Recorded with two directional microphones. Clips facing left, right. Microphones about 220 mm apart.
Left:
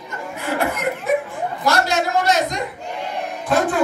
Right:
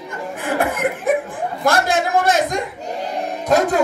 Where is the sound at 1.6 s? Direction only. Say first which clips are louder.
Right 2 dB; 50° right (ahead or behind).